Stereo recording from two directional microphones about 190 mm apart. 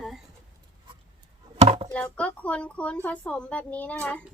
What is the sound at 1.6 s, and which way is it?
Chop, 35° right (ahead or behind).